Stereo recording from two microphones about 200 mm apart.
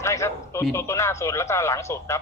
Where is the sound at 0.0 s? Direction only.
15° left (ahead or behind).